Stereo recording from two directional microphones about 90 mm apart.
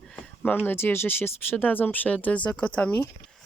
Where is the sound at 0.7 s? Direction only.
25° left (ahead or behind).